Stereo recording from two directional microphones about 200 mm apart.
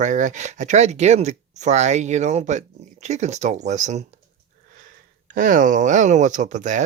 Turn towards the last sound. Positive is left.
turn(degrees=-40)  # may be behind; listen again after turning